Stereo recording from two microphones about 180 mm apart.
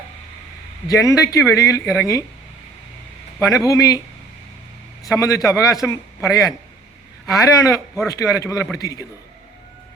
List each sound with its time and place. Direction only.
0.9 s a man's voice: 20° left (ahead or behind)
3.5 s a man's voice: 15° left (ahead or behind)
5.1 s a man's voice: 15° left (ahead or behind)